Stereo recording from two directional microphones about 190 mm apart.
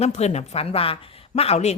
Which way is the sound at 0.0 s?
35° left (ahead or behind).